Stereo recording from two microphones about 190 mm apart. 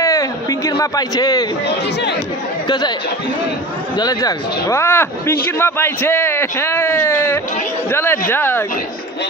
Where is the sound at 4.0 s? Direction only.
20° left (ahead or behind).